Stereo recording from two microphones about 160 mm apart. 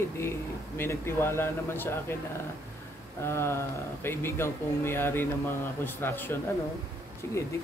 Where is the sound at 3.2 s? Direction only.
15° left (ahead or behind).